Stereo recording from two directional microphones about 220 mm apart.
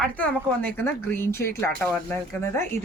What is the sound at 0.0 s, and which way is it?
Speech, 5° left (ahead or behind).